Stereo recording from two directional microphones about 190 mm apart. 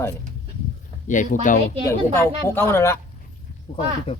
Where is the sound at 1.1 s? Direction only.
45° left (ahead or behind).